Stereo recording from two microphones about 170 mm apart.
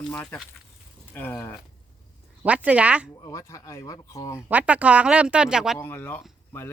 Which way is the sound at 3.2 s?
20° left (ahead or behind).